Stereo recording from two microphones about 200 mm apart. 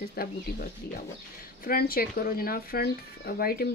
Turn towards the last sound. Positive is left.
turn(degrees=50)  # may be behind; listen again after turning